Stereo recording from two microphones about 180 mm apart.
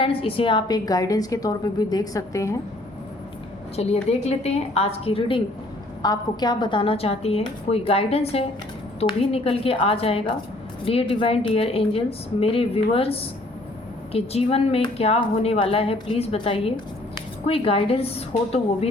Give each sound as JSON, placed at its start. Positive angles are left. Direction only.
{"t": 0.0, "sound": "a woman's voice", "side_deg": 30}
{"t": 3.8, "sound": "speech", "side_deg": 35}